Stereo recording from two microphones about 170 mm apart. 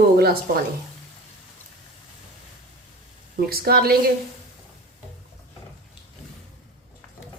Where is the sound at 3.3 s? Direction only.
60° right (ahead or behind).